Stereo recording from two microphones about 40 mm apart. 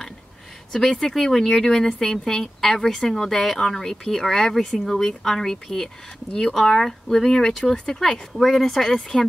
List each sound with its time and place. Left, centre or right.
0.7 s speech: centre
8.0 s speech: centre